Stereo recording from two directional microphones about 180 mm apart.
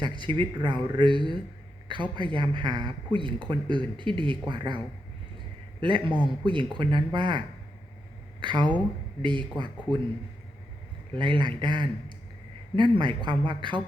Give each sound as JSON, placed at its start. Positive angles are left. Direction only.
{"t": 0.0, "sound": "speech", "side_deg": -25}
{"t": 5.8, "sound": "speech", "side_deg": -25}
{"t": 11.1, "sound": "speech", "side_deg": -25}